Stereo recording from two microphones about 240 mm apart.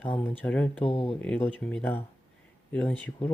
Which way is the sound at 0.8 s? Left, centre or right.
Left.